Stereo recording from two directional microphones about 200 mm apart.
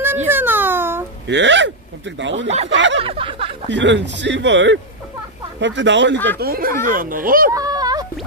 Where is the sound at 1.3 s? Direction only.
65° right (ahead or behind).